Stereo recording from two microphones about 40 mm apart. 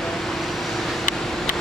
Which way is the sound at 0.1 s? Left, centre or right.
Centre.